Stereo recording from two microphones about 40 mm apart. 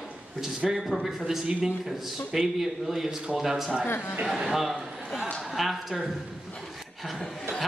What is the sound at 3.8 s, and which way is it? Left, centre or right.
Speech, left.